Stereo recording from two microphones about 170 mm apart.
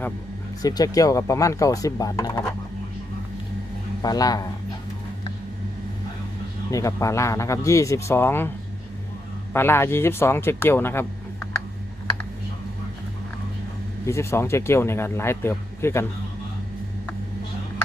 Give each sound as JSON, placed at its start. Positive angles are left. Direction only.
{"t": 0.6, "sound": "speech", "side_deg": 20}
{"t": 4.0, "sound": "speech", "side_deg": 20}
{"t": 6.7, "sound": "speech", "side_deg": 20}
{"t": 9.5, "sound": "speech", "side_deg": 15}
{"t": 14.1, "sound": "speech", "side_deg": 15}